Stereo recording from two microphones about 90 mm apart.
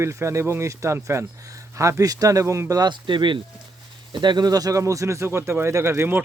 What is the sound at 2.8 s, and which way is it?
Speech, 60° right (ahead or behind).